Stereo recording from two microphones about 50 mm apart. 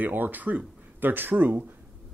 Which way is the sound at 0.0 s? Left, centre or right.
Right.